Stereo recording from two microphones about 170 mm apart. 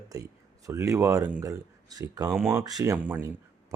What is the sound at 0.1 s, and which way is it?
Speech, 20° right (ahead or behind).